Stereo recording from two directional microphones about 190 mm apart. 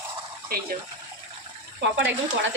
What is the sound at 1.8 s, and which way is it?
Speech, 75° right (ahead or behind).